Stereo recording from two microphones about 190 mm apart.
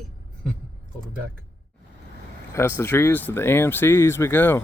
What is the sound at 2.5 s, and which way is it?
Speech, 10° left (ahead or behind).